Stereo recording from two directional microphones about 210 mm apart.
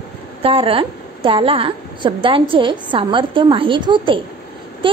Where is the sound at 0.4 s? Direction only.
25° right (ahead or behind).